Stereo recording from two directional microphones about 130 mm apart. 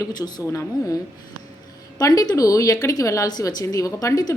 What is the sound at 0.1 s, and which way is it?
Speech, 30° left (ahead or behind).